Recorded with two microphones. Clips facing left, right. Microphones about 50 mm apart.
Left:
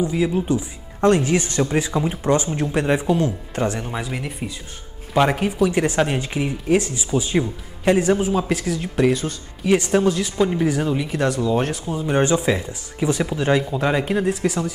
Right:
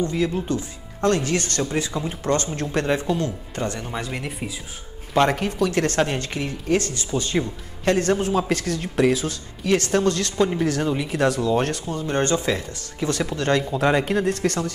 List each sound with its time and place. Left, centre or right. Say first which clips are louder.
0.0 s speech: left 3 dB; centre
3.8 s speech: left 2 dB; centre
9.8 s speech: left 2 dB; centre
10.0 s speech: left 1 dB; centre